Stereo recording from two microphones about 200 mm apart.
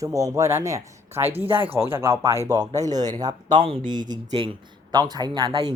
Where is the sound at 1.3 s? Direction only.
30° right (ahead or behind).